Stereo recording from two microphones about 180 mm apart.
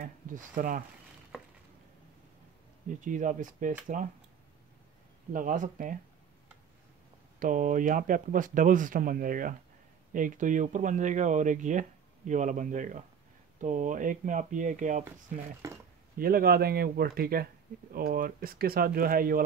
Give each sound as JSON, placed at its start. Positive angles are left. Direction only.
{"t": 0.0, "sound": "speech", "side_deg": -50}
{"t": 2.9, "sound": "speech", "side_deg": -45}
{"t": 5.3, "sound": "speech", "side_deg": -45}
{"t": 7.3, "sound": "speech", "side_deg": -45}
{"t": 16.2, "sound": "speech", "side_deg": -55}